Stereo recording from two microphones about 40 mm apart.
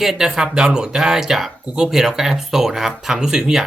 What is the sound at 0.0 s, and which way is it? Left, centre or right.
Speech, centre.